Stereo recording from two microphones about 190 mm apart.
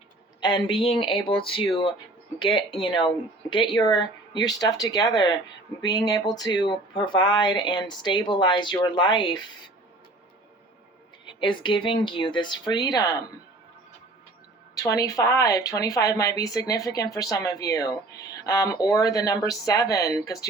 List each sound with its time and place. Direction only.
0.4 s speech: 25° left (ahead or behind)
11.3 s speech: 25° left (ahead or behind)
14.8 s speech: 15° left (ahead or behind)